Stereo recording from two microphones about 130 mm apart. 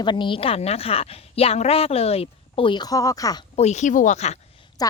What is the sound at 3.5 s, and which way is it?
Speech, 60° left (ahead or behind).